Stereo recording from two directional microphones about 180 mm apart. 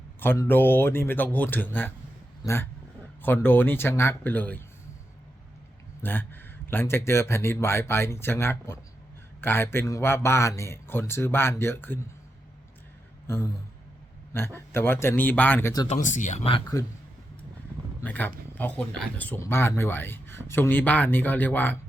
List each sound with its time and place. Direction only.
0.2 s speech: 10° left (ahead or behind)
6.0 s speech: 10° left (ahead or behind)
13.2 s a sound: 15° left (ahead or behind)
14.3 s speech: 15° left (ahead or behind)
15.9 s speech: 40° left (ahead or behind)
18.0 s speech: 10° left (ahead or behind)